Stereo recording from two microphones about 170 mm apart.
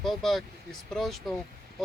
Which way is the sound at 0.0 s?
Centre (ahead or behind).